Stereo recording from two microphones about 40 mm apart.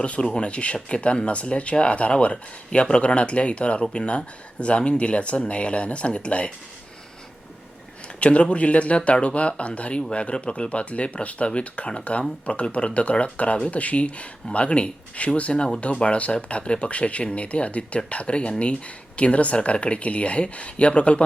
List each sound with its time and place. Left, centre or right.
0.0 s speech: left
8.2 s speech: left